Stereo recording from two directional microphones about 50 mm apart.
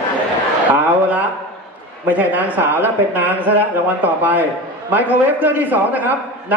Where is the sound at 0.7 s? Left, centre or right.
Right.